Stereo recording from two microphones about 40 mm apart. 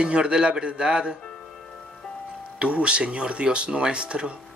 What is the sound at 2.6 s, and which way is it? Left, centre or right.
A man's voice, right.